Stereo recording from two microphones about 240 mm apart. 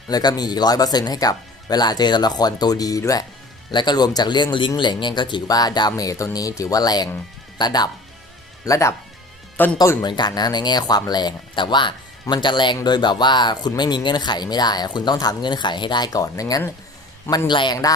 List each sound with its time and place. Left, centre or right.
0.1 s speech: centre